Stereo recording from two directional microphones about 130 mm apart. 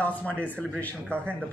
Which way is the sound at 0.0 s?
10° left (ahead or behind).